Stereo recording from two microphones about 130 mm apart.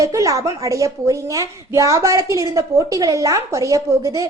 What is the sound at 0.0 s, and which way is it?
Speech, 25° right (ahead or behind).